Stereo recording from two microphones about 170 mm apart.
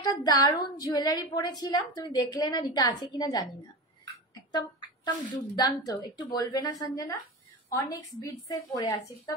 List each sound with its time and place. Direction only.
0.1 s a woman's voice: 25° left (ahead or behind)
4.5 s a sound: 25° left (ahead or behind)
5.6 s a woman's voice: 20° left (ahead or behind)